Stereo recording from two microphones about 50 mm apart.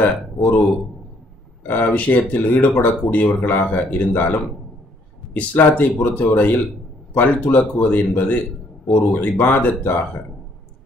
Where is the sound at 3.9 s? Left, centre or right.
Left.